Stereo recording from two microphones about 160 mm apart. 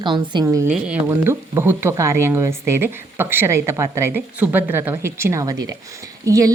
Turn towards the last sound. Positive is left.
turn(degrees=-20)  # may be behind; listen again after turning